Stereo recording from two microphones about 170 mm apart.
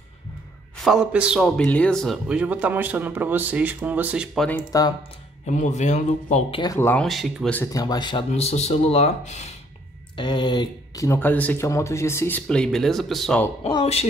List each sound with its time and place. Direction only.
0.7 s a man's voice: centre (ahead or behind)
4.7 s speech: 20° left (ahead or behind)
5.5 s speech: 45° left (ahead or behind)
6.6 s speech: 20° left (ahead or behind)
7.1 s speech: centre (ahead or behind)
7.5 s speech: 20° left (ahead or behind)
8.3 s speech: 40° left (ahead or behind)
10.1 s speech: 25° left (ahead or behind); by 13.5 s 5° left (ahead or behind)
13.7 s speech: 30° left (ahead or behind)